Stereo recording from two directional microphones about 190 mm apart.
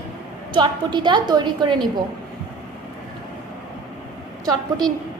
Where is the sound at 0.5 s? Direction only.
25° right (ahead or behind).